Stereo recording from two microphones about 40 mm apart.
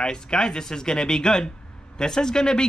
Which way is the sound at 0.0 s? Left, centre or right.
Left.